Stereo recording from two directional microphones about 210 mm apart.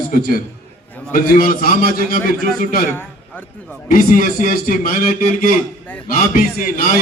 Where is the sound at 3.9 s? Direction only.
40° left (ahead or behind).